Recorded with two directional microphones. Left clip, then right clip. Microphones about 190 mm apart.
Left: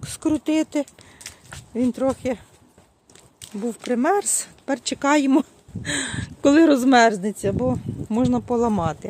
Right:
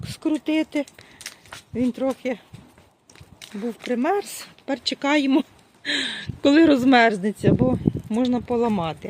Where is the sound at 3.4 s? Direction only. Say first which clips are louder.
Even; 20° left (ahead or behind).